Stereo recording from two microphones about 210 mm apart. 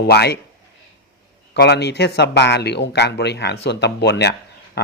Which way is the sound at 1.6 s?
50° left (ahead or behind).